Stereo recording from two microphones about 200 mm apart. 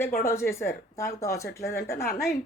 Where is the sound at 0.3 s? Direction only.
15° left (ahead or behind).